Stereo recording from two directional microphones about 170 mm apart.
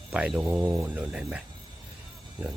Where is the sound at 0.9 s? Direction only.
5° right (ahead or behind).